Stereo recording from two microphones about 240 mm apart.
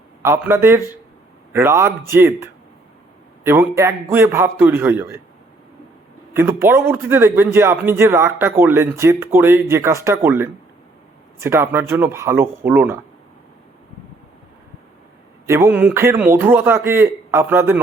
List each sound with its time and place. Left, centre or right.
0.2 s a man's voice: centre
6.3 s a man's voice: centre
15.4 s a man's voice: centre